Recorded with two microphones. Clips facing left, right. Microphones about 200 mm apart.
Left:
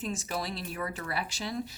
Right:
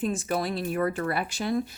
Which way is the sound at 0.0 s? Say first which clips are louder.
Right 7 dB; 55° right (ahead or behind).